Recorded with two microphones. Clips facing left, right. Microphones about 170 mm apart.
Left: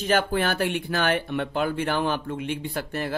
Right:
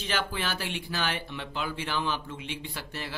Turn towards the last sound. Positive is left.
turn(degrees=50)  # may be behind; listen again after turning